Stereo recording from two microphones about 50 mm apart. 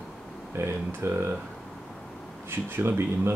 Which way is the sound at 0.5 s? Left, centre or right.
Right.